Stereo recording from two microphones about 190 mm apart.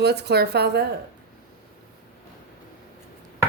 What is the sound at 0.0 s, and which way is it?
Speech, 60° right (ahead or behind).